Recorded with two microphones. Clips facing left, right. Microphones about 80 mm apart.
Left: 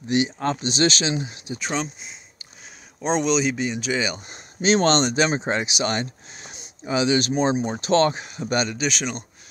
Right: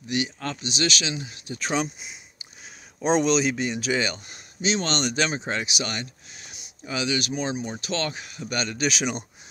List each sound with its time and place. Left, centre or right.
0.1 s speech: left
1.7 s speech: centre
4.6 s speech: left
5.0 s speech: left
8.7 s speech: centre